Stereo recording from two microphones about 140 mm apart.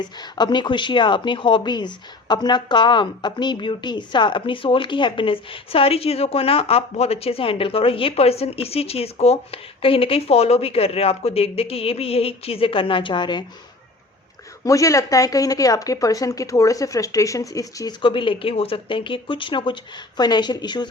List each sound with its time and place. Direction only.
0.0 s speech: 30° left (ahead or behind)
14.6 s speech: 25° left (ahead or behind)